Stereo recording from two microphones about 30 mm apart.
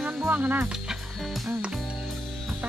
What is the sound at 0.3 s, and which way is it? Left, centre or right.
Speech, right.